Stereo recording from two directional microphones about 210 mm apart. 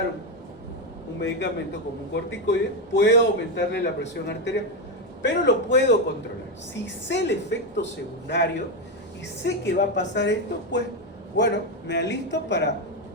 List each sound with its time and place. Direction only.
1.2 s a man's voice: 55° left (ahead or behind)
6.8 s a man's voice: 60° left (ahead or behind)